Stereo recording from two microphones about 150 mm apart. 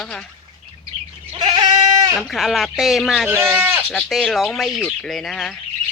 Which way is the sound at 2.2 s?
Centre (ahead or behind).